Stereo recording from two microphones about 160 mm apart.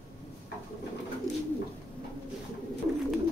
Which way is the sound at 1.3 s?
20° right (ahead or behind).